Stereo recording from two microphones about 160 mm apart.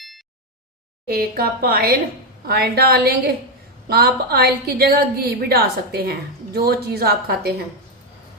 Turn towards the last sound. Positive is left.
turn(degrees=-75)  # may be behind; listen again after turning